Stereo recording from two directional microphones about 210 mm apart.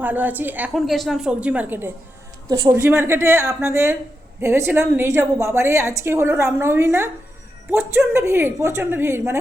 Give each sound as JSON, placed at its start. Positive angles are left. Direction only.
{"t": 0.0, "sound": "a woman's voice", "side_deg": -10}